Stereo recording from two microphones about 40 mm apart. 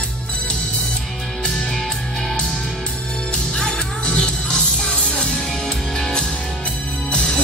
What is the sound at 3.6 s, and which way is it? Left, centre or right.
Music, left.